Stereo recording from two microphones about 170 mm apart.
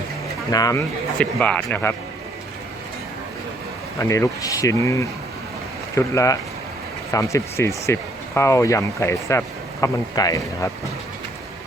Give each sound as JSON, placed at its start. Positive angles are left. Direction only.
{"t": 0.5, "sound": "speech", "side_deg": 20}
{"t": 1.2, "sound": "speech", "side_deg": 10}
{"t": 3.9, "sound": "speech", "side_deg": 15}